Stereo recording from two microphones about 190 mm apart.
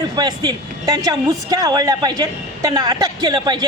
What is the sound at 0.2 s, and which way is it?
Speech, 20° right (ahead or behind).